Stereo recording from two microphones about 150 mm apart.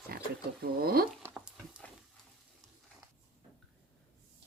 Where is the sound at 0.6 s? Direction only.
90° right.